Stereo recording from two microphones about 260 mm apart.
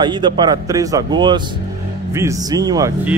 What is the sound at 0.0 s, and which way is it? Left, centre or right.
Speech, centre.